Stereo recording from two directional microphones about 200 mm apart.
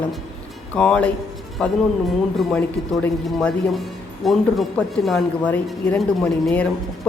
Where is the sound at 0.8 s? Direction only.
5° left (ahead or behind).